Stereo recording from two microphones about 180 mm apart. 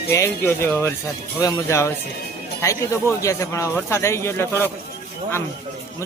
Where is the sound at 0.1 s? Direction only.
15° left (ahead or behind).